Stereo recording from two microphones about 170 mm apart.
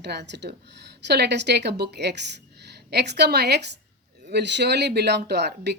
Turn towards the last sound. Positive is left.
turn(degrees=-75)  # may be behind; listen again after turning